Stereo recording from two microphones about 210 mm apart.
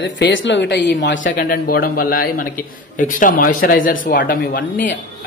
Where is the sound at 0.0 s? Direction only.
60° left (ahead or behind).